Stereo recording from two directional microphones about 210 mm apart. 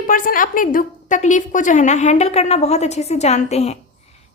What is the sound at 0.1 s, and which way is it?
A woman's voice, 40° left (ahead or behind).